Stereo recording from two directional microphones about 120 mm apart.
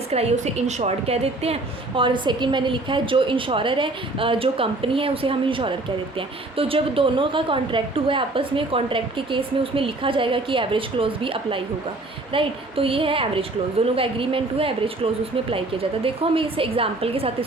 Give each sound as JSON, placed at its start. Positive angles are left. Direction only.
{"t": 0.1, "sound": "a woman's voice", "side_deg": -65}
{"t": 2.0, "sound": "a woman's voice", "side_deg": -45}